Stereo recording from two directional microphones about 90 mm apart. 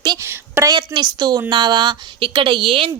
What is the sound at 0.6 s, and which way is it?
A woman's voice, 55° right (ahead or behind).